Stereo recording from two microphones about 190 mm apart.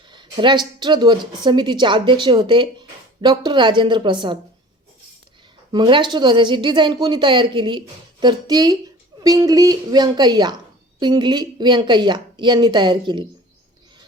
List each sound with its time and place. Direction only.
0.1 s speech: 25° right (ahead or behind)
5.7 s speech: 25° right (ahead or behind)